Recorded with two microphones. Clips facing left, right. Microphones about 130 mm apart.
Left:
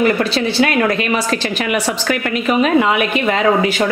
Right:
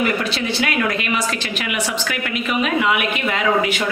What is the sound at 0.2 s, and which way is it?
Speech, 30° left (ahead or behind).